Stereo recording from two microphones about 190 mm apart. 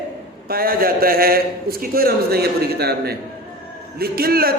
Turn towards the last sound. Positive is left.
turn(degrees=-50)  # may be behind; listen again after turning